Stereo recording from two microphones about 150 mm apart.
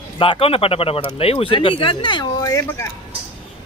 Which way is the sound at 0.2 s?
35° left (ahead or behind).